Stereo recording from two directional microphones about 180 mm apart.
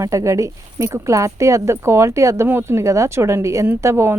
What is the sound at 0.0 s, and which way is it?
Speech, 15° right (ahead or behind).